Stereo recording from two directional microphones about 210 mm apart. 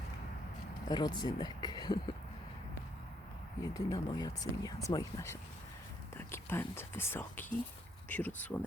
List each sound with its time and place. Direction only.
0.9 s speech: 20° left (ahead or behind)
3.8 s speech: 15° left (ahead or behind)